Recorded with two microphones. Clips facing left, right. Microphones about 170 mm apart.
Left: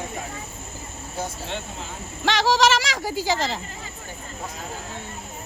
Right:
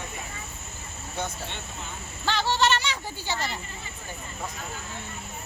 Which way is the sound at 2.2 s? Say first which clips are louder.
Left 5 dB; 85° left.